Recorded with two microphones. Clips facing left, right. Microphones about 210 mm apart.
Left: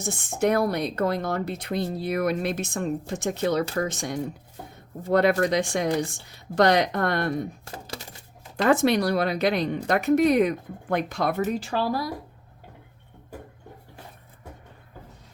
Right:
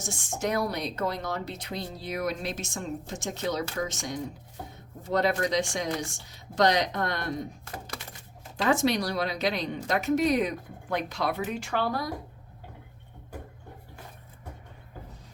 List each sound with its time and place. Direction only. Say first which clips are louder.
0.0 s speech: left 7 dB; 60° left (ahead or behind)
8.6 s speech: left 5 dB; 55° left (ahead or behind); by 11.9 s 30° left (ahead or behind)